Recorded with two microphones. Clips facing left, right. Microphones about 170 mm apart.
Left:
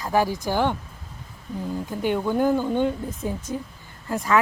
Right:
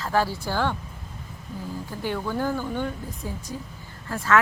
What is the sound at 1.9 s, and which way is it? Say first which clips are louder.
Speech: left 5 dB; 20° left (ahead or behind).